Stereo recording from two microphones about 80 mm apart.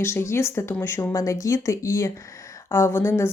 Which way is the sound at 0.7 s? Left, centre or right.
Left.